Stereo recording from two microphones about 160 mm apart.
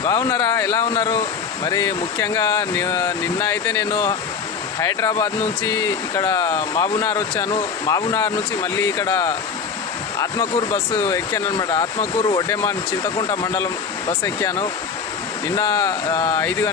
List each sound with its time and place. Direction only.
0.0 s speech: 20° left (ahead or behind)